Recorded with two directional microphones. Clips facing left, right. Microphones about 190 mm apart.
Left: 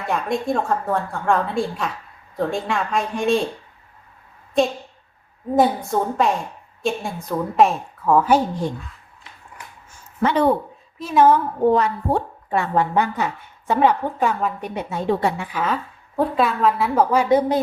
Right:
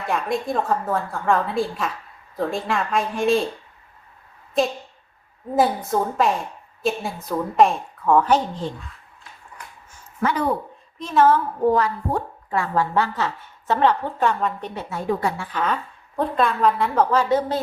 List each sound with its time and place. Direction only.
0.1 s a woman's voice: centre (ahead or behind)
4.6 s a woman's voice: centre (ahead or behind)
10.2 s speech: 25° left (ahead or behind)
10.9 s speech: 10° left (ahead or behind)
11.6 s a woman's voice: 25° left (ahead or behind)
15.5 s a woman's voice: 5° left (ahead or behind)